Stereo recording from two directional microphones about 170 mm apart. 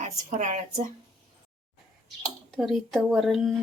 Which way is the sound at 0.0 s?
45° right (ahead or behind).